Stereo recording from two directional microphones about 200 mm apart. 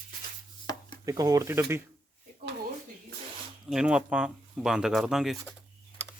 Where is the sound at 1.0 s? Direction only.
15° right (ahead or behind).